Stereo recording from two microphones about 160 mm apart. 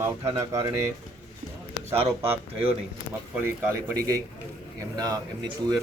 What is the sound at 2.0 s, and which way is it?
A man's voice, 15° right (ahead or behind).